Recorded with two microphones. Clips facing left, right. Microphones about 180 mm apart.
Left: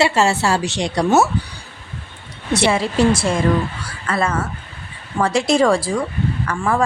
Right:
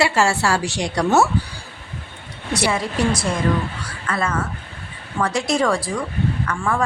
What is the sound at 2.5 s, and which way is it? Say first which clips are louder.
A woman's voice: left 4 dB; 25° left (ahead or behind).